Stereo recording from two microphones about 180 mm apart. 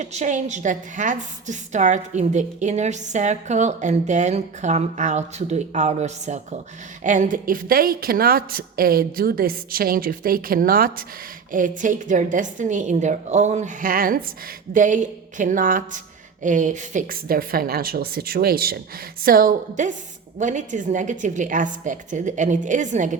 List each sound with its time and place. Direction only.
0.0 s a woman's voice: 40° right (ahead or behind)